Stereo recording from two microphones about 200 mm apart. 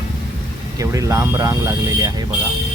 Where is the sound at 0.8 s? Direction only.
15° right (ahead or behind).